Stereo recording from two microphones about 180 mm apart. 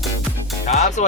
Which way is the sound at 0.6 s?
40° left (ahead or behind).